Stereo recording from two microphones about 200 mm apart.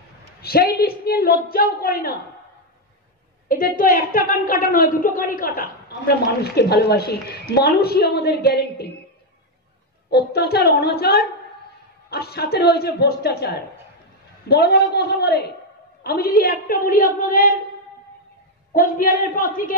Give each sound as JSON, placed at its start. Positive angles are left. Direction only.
{"t": 0.4, "sound": "a woman's voice", "side_deg": 50}
{"t": 3.4, "sound": "a woman's voice", "side_deg": 45}
{"t": 10.0, "sound": "a woman's voice", "side_deg": 55}
{"t": 18.7, "sound": "a woman's voice", "side_deg": 45}